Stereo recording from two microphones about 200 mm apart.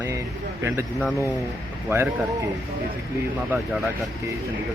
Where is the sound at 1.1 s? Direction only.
15° left (ahead or behind).